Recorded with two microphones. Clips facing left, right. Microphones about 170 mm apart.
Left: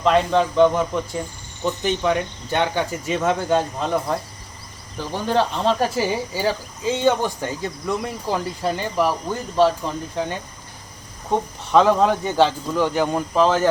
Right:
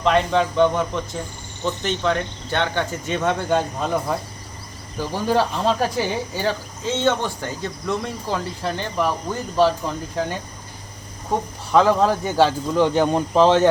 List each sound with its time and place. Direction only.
0.0 s speech: centre (ahead or behind)
7.9 s speech: centre (ahead or behind)
11.3 s speech: centre (ahead or behind)
12.7 s speech: 20° right (ahead or behind)